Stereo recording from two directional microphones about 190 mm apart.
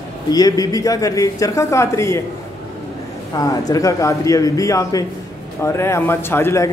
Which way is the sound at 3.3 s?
20° left (ahead or behind).